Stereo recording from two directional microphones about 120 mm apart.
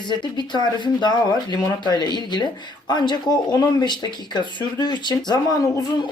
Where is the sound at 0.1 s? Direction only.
40° left (ahead or behind).